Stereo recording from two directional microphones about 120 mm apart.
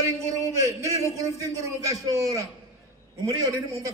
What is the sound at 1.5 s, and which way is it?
A man's voice, 25° right (ahead or behind).